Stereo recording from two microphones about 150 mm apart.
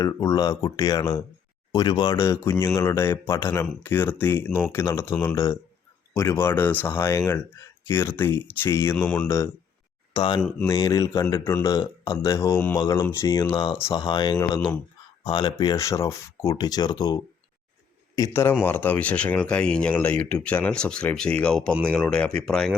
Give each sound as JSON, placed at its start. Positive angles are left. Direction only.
{"t": 0.0, "sound": "speech", "side_deg": 20}
{"t": 10.2, "sound": "speech", "side_deg": 30}
{"t": 15.2, "sound": "speech", "side_deg": 35}
{"t": 18.2, "sound": "speech", "side_deg": 15}